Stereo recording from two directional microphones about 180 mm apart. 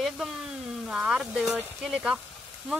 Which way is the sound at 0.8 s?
5° right (ahead or behind).